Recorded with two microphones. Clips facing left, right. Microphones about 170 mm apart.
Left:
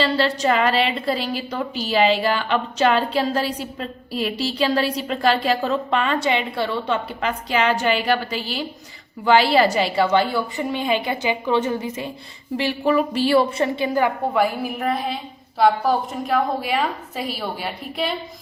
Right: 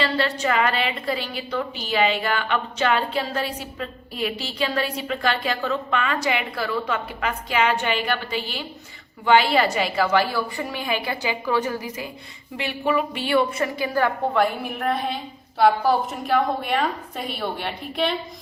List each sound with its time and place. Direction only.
0.0 s a woman's voice: 35° left (ahead or behind)
12.5 s a woman's voice: 35° left (ahead or behind)
14.3 s a woman's voice: 5° left (ahead or behind)